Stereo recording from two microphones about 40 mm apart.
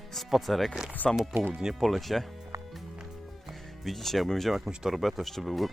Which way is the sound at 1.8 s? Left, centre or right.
Centre.